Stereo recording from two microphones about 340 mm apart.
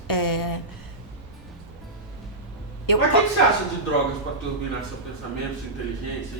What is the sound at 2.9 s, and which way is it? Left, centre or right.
Speech, left.